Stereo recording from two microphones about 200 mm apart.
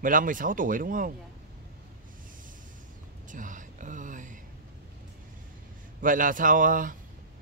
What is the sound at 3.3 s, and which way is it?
Speech, 40° right (ahead or behind).